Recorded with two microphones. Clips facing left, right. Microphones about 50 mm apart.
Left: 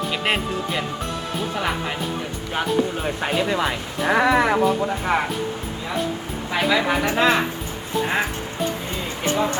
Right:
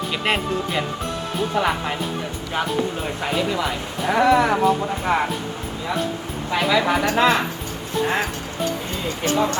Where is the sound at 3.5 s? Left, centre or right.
Left.